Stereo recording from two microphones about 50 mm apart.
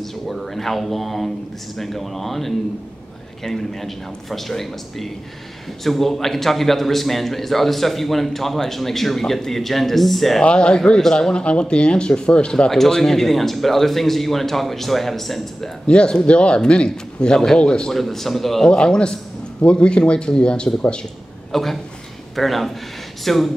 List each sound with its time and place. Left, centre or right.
0.0 s a man's voice: centre
10.4 s a man's voice: centre
12.7 s a man's voice: centre
15.9 s a man's voice: centre
17.9 s a man's voice: centre
18.7 s a man's voice: centre
21.5 s a man's voice: centre